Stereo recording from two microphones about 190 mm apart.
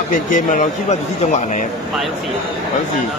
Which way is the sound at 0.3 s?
40° left (ahead or behind).